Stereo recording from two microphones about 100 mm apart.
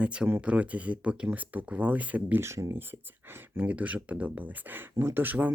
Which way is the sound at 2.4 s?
30° right (ahead or behind).